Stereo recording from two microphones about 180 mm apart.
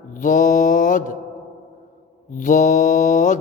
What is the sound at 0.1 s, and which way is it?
Mantra, 45° left (ahead or behind).